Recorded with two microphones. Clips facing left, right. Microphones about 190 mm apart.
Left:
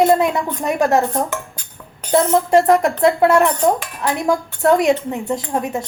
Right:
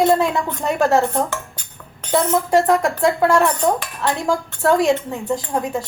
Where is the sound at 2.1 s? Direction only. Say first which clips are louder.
Left 3 dB; 25° left (ahead or behind).